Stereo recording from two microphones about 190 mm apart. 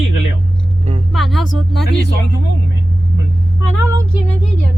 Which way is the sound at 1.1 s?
Centre (ahead or behind).